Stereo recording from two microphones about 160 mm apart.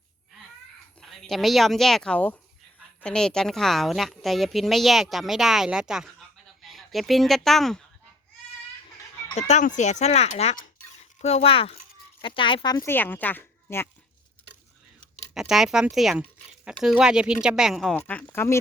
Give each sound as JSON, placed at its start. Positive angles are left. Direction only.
{"t": 1.3, "sound": "a woman's voice", "side_deg": 0}
{"t": 9.5, "sound": "speech", "side_deg": 50}
{"t": 12.8, "sound": "speech", "side_deg": 15}
{"t": 15.4, "sound": "a woman's voice", "side_deg": -5}
{"t": 17.9, "sound": "speech", "side_deg": 10}